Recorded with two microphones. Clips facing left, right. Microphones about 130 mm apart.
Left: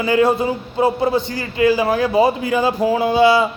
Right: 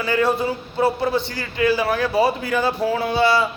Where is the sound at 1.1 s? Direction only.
40° left (ahead or behind).